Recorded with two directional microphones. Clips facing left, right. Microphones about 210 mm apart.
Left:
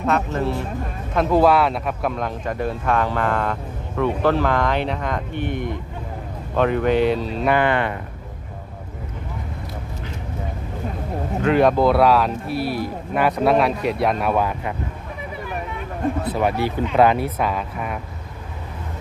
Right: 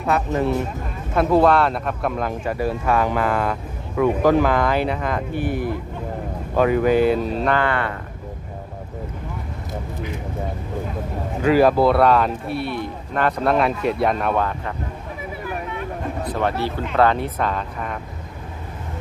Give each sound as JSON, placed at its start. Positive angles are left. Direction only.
{"t": 1.1, "sound": "speech", "side_deg": 0}
{"t": 7.4, "sound": "speech", "side_deg": 15}
{"t": 11.4, "sound": "speech", "side_deg": -5}
{"t": 15.4, "sound": "a sound", "side_deg": 5}
{"t": 16.9, "sound": "speech", "side_deg": 10}